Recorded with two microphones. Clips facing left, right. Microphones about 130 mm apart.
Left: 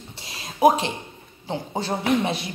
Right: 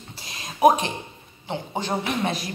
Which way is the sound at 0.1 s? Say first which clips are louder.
Right 2 dB; 30° left (ahead or behind).